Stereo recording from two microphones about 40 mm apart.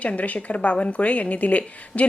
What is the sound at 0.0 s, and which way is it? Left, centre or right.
Speech, left.